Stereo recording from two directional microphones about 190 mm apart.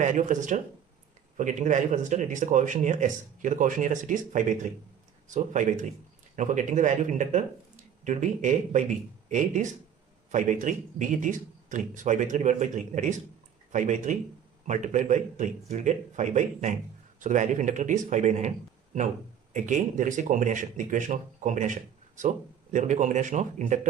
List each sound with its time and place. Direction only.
0.0 s speech: 40° right (ahead or behind)
19.5 s speech: 40° right (ahead or behind)